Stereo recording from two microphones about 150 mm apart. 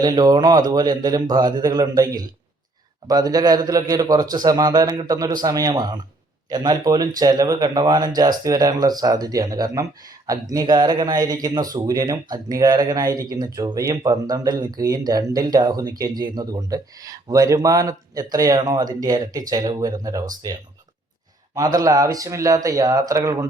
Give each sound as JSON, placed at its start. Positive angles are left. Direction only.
{"t": 0.0, "sound": "speech", "side_deg": -25}
{"t": 21.5, "sound": "speech", "side_deg": -25}